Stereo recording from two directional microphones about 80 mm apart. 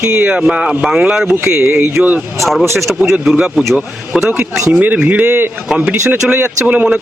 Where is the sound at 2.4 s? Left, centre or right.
Centre.